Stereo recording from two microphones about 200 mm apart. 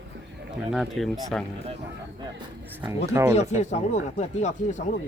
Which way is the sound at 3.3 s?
35° left (ahead or behind).